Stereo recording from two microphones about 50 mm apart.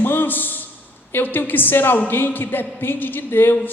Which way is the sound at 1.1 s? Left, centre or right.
Left.